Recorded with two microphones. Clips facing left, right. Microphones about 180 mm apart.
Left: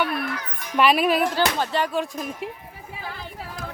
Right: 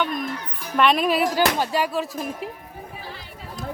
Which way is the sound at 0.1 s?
70° left (ahead or behind).